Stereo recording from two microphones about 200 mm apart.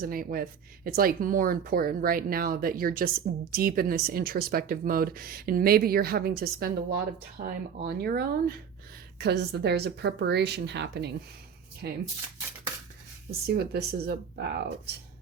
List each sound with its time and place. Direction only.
0.0 s a woman's voice: 45° right (ahead or behind)
13.5 s speech: 55° right (ahead or behind)